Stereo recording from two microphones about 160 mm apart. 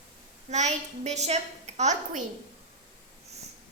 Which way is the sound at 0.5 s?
45° right (ahead or behind).